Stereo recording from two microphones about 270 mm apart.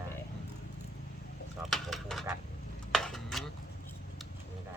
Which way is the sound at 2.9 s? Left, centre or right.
Centre.